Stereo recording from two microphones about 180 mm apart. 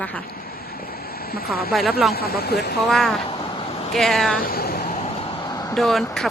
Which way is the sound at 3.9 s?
Centre (ahead or behind).